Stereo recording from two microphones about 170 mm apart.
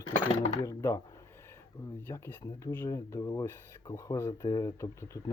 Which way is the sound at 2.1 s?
15° left (ahead or behind).